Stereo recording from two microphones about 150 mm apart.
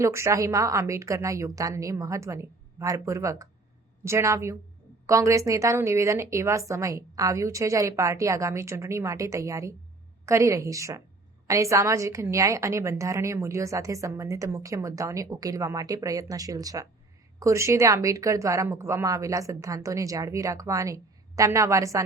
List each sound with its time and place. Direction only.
0.0 s a woman's voice: 20° right (ahead or behind)